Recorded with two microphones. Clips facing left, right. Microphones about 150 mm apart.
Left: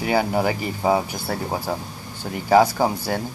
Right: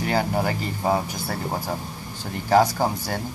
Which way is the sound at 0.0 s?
10° left (ahead or behind).